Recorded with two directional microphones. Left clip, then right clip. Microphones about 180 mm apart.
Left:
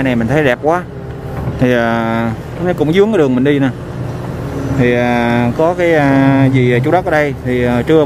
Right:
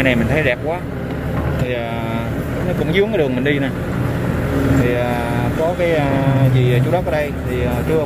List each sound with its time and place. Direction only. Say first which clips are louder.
0.0 s speech: left 3 dB; 30° left (ahead or behind)
1.7 s mantra: left 9 dB; 45° left (ahead or behind)
2.9 s speech: left 5 dB; 40° left (ahead or behind)
4.8 s mantra: left 6 dB; 50° left (ahead or behind)